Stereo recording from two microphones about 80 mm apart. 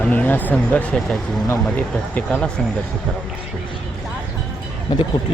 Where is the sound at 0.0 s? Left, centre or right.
Centre.